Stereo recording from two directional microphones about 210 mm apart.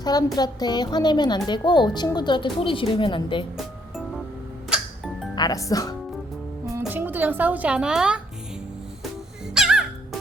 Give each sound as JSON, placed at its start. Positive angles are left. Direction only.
{"t": 0.0, "sound": "a woman's voice", "side_deg": 20}
{"t": 4.7, "sound": "music", "side_deg": -5}
{"t": 5.3, "sound": "speech", "side_deg": 20}
{"t": 6.7, "sound": "speech", "side_deg": -10}
{"t": 9.6, "sound": "music", "side_deg": 0}